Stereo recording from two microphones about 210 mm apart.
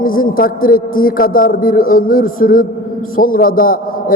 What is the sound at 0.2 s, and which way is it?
A man's voice, 40° left (ahead or behind).